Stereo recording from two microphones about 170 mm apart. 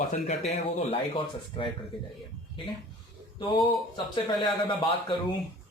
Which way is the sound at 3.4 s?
25° left (ahead or behind).